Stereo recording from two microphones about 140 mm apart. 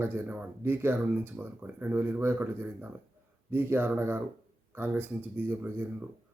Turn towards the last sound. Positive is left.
turn(degrees=-15)  # may be behind; listen again after turning